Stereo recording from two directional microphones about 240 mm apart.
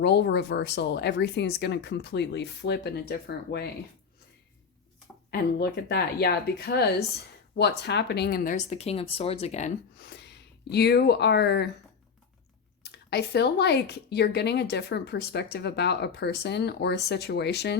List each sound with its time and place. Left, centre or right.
0.0 s speech: left
5.3 s speech: left
10.0 s speech: left
12.8 s speech: left